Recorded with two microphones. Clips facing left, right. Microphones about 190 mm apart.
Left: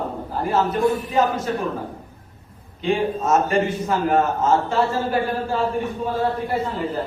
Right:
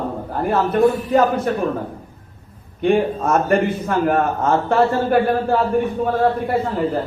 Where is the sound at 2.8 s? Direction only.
55° right (ahead or behind).